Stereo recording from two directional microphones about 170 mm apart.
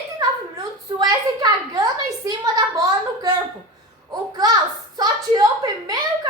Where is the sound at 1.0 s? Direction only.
25° right (ahead or behind).